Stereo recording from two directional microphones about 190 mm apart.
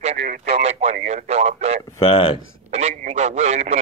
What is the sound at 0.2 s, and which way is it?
Speech, 55° right (ahead or behind).